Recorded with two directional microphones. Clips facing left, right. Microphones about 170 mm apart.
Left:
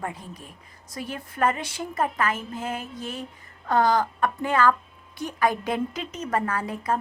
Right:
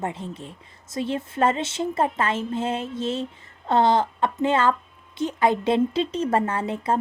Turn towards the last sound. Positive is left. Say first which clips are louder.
# right 3 dB
turn(degrees=-25)  # may be behind; listen again after turning